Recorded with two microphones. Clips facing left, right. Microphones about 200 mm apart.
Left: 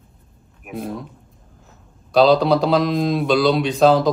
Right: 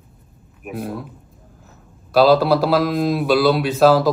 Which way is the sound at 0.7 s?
5° right (ahead or behind).